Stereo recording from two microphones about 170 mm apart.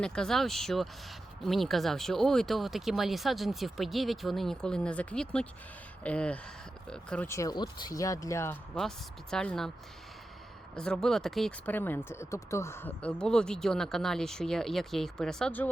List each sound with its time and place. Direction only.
0.0 s speech: 5° left (ahead or behind)
7.3 s speech: 20° left (ahead or behind)
8.7 s speech: 5° left (ahead or behind)
10.8 s speech: 5° left (ahead or behind)